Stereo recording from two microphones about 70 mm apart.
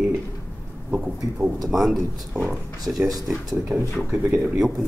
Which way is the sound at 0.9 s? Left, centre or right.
Right.